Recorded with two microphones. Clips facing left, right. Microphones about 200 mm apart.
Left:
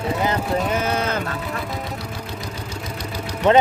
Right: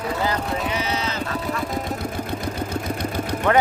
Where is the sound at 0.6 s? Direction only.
50° left (ahead or behind).